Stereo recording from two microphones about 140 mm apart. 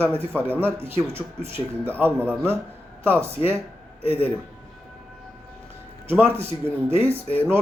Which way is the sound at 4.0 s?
40° left (ahead or behind).